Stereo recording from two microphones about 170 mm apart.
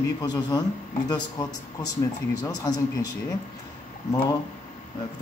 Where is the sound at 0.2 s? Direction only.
20° left (ahead or behind).